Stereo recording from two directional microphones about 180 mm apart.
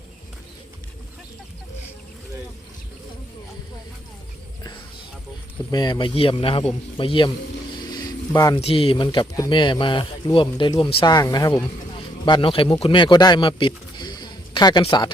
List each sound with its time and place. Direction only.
5.7 s speech: 25° left (ahead or behind)
8.6 s a man's voice: 30° left (ahead or behind)